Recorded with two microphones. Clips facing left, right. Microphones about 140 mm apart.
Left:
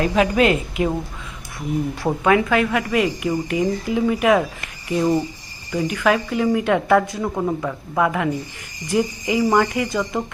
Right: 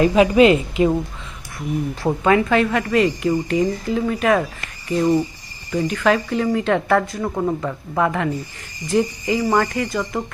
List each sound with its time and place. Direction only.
0.0 s speech: 5° right (ahead or behind)
2.0 s a woman's voice: 5° left (ahead or behind)
7.2 s a woman's voice: centre (ahead or behind); by 10.2 s 15° left (ahead or behind)